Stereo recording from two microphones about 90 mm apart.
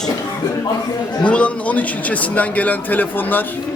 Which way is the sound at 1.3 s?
15° left (ahead or behind).